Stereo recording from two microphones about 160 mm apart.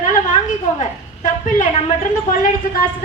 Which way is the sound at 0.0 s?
55° left (ahead or behind).